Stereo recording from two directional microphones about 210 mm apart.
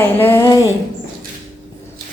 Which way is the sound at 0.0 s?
10° left (ahead or behind).